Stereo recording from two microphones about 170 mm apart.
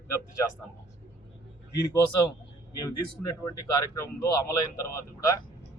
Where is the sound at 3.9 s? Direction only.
20° left (ahead or behind).